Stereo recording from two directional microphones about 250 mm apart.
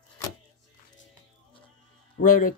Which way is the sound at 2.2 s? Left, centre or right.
Left.